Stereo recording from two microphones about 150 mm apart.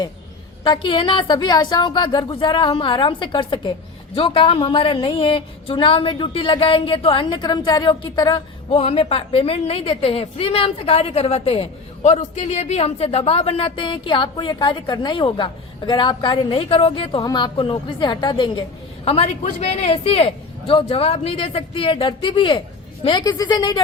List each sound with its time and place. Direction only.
0.6 s a woman's voice: 35° left (ahead or behind)
8.7 s a woman's voice: 40° left (ahead or behind)